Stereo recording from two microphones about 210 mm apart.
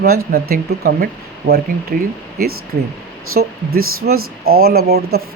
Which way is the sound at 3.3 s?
90° right.